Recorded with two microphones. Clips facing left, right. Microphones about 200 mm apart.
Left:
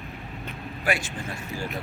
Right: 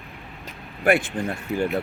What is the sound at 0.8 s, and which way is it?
Speech, 55° right (ahead or behind).